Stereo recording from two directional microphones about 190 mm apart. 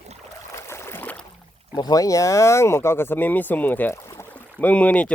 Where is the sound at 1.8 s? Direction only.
20° left (ahead or behind).